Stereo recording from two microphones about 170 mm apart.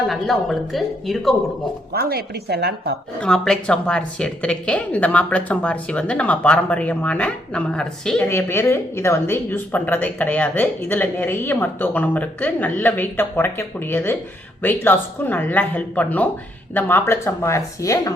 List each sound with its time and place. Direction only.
0.1 s a woman's voice: centre (ahead or behind)
1.9 s a woman's voice: 65° right (ahead or behind)
3.2 s speech: 5° left (ahead or behind)